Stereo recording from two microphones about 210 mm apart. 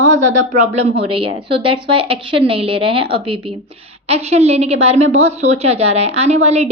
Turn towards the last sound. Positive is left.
turn(degrees=-30)  # may be behind; listen again after turning